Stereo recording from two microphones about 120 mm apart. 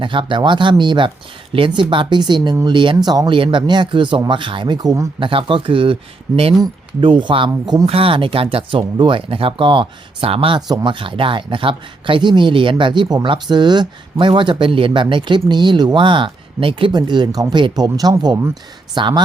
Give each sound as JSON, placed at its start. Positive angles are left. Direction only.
{"t": 0.0, "sound": "speech", "side_deg": -45}
{"t": 5.2, "sound": "speech", "side_deg": -45}